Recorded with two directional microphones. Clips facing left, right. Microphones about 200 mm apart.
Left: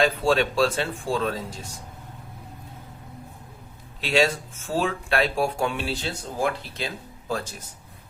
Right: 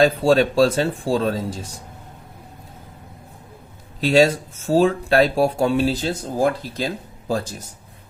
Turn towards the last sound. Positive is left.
turn(degrees=-40)  # may be behind; listen again after turning